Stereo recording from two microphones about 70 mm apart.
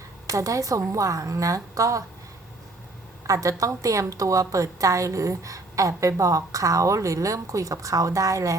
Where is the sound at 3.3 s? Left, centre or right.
Right.